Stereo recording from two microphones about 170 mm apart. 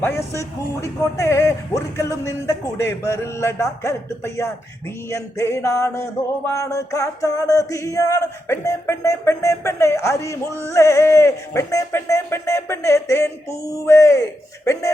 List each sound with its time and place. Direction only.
0.0 s music: 15° left (ahead or behind)